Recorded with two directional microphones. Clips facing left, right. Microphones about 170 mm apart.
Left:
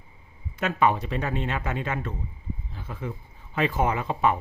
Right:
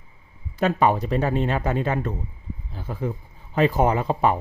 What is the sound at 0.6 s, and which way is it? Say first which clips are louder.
Speech: right 3 dB; 35° right (ahead or behind).